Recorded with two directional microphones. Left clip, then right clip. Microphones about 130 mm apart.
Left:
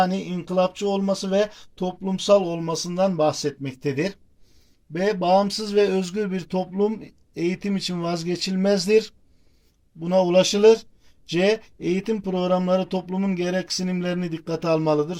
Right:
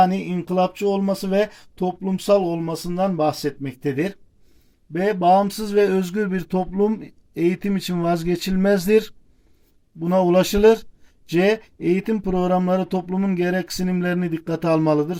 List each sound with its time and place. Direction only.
0.0 s speech: 35° right (ahead or behind)